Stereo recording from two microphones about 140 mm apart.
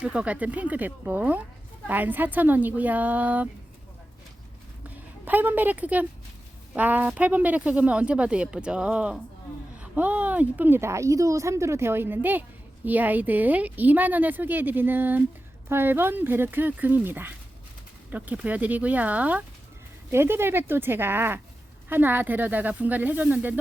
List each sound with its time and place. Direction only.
0.0 s speech: 10° right (ahead or behind)
5.2 s speech: 15° right (ahead or behind)